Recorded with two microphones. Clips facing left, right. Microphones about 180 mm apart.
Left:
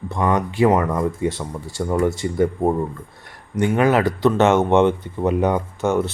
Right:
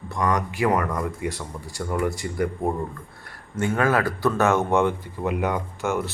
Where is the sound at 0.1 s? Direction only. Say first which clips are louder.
Left 4 dB; 25° left (ahead or behind).